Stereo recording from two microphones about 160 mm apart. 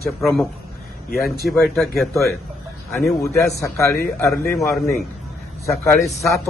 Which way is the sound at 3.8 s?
15° left (ahead or behind).